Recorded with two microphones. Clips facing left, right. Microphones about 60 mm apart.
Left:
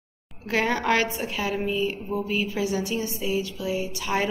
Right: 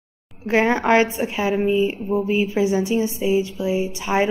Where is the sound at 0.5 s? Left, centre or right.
Right.